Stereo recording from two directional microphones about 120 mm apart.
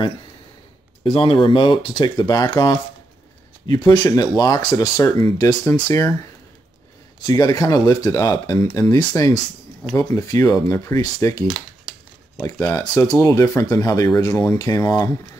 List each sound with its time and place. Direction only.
1.0 s speech: 50° left (ahead or behind); by 6.0 s 30° left (ahead or behind)
7.2 s speech: 30° left (ahead or behind)
11.4 s a sound: 5° left (ahead or behind)
12.4 s speech: 25° left (ahead or behind)